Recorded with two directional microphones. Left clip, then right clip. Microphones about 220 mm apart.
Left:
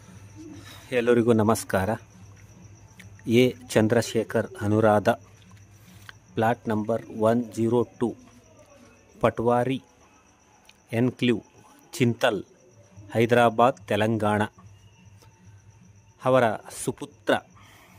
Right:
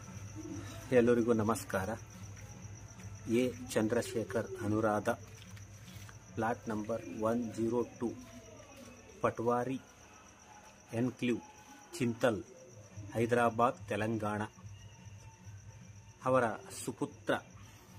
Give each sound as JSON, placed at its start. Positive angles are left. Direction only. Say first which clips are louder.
{"t": 0.8, "sound": "speech", "louder": "left 7 dB", "side_deg": 45}
{"t": 3.3, "sound": "speech", "louder": "left 12 dB", "side_deg": 40}
{"t": 6.3, "sound": "speech", "louder": "left 11 dB", "side_deg": 45}
{"t": 9.2, "sound": "speech", "louder": "left 10 dB", "side_deg": 45}
{"t": 10.9, "sound": "speech", "louder": "left 11 dB", "side_deg": 45}
{"t": 16.2, "sound": "speech", "louder": "left 10 dB", "side_deg": 45}